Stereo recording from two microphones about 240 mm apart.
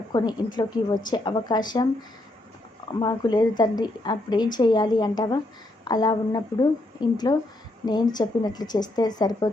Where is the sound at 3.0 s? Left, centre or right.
Centre.